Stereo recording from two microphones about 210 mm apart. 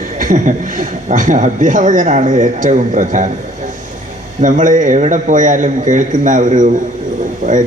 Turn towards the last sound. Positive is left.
turn(degrees=-40)  # may be behind; listen again after turning